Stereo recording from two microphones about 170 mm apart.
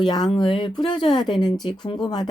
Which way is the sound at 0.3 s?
25° left (ahead or behind).